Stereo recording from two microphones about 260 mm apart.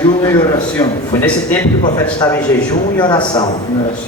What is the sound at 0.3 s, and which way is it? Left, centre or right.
A man's voice, centre.